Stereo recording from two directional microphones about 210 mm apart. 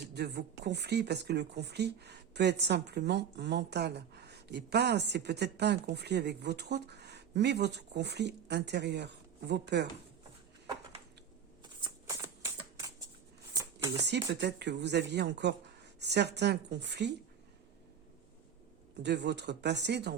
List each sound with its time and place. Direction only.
0.1 s speech: 50° right (ahead or behind)
11.8 s shuffling cards: 15° right (ahead or behind)
13.5 s a sound: 15° right (ahead or behind)
14.0 s speech: 55° right (ahead or behind)
19.0 s speech: 55° right (ahead or behind)